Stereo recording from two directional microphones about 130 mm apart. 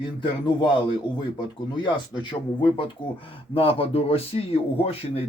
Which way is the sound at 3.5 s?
45° left (ahead or behind).